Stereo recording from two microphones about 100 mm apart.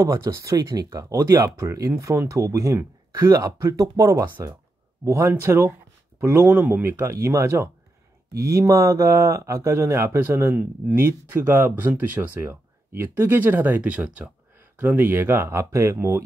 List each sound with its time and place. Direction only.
0.0 s speech: 35° right (ahead or behind)